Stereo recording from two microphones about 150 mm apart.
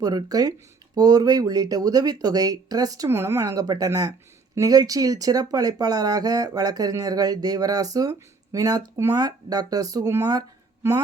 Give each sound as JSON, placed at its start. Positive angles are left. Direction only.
{"t": 0.0, "sound": "speech", "side_deg": -25}